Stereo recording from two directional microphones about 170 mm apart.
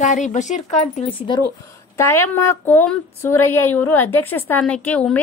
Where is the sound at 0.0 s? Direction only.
45° left (ahead or behind).